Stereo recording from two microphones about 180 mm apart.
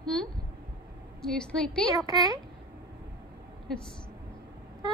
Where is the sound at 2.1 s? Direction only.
20° right (ahead or behind).